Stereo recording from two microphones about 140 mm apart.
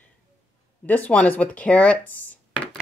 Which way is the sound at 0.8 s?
10° left (ahead or behind).